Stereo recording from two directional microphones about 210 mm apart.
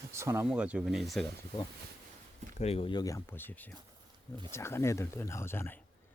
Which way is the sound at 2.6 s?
30° left (ahead or behind).